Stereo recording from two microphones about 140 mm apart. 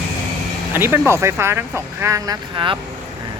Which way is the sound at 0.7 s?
15° right (ahead or behind).